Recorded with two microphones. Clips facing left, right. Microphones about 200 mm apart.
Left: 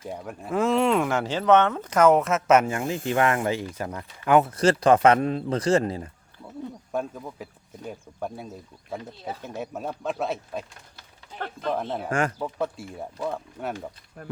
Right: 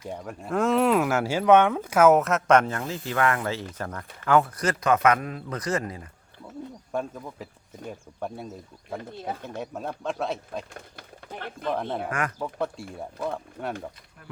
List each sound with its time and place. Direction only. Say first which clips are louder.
0.1 s speech: even; centre (ahead or behind); by 6.1 s 30° left (ahead or behind)
6.9 s speech: even; centre (ahead or behind)
9.6 s speech: left 1 dB; 5° left (ahead or behind)
10.8 s a sound: right 8 dB; 55° right (ahead or behind)
11.7 s speech: left 1 dB; 5° left (ahead or behind)